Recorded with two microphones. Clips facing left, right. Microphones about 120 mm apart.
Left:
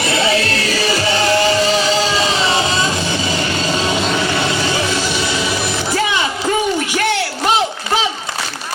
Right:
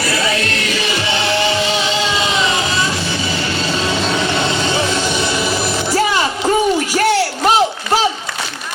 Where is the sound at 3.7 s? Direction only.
15° left (ahead or behind).